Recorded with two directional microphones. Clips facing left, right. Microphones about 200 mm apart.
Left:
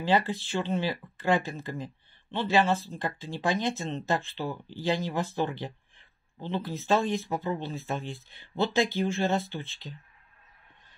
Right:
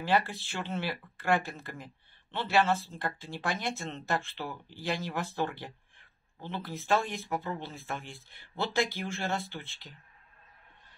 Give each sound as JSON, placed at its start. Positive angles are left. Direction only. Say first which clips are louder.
{"t": 0.0, "sound": "speech", "louder": "left 3 dB", "side_deg": 20}